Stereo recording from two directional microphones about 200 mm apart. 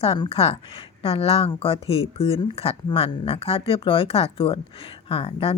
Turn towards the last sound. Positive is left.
turn(degrees=25)  # may be behind; listen again after turning